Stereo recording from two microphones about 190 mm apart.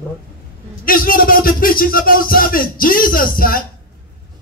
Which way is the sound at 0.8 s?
50° left (ahead or behind).